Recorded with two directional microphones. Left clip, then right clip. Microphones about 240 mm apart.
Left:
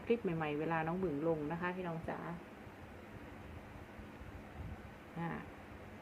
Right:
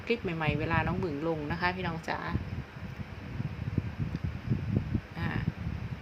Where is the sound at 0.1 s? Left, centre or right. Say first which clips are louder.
Right 5 dB; centre.